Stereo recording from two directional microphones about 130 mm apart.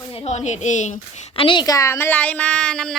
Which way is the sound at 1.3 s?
40° left (ahead or behind).